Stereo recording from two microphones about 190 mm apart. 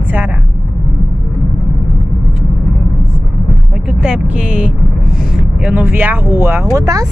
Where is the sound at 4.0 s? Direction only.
5° right (ahead or behind).